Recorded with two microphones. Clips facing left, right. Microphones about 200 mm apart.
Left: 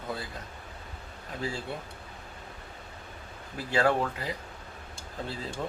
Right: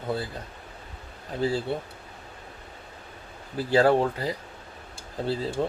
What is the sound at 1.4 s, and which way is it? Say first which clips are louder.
Speech: right 9 dB; 35° right (ahead or behind).